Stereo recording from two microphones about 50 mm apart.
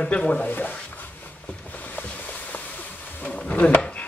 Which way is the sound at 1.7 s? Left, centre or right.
Left.